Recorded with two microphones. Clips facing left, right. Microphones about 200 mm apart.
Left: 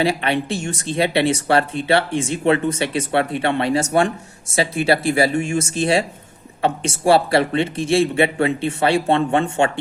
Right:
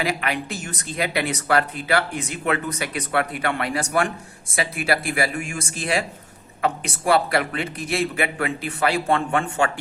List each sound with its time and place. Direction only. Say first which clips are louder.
0.0 s speech: left 6 dB; 30° left (ahead or behind)